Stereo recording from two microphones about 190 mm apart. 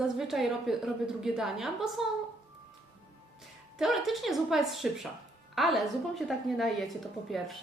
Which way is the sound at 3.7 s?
Centre (ahead or behind).